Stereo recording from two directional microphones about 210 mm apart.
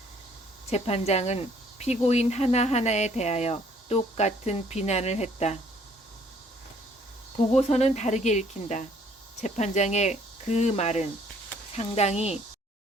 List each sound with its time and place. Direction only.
0.7 s speech: 30° left (ahead or behind)
7.3 s speech: 30° left (ahead or behind)